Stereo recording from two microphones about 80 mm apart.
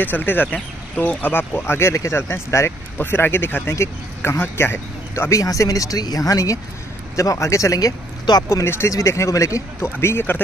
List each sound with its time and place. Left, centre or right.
0.0 s speech: left
5.4 s speech: left
8.5 s speech: left
9.9 s speech: left